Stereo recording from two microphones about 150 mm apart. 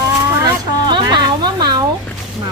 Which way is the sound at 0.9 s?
30° right (ahead or behind).